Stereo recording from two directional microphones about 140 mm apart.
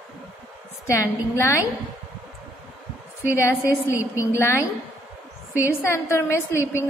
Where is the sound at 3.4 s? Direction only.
20° left (ahead or behind).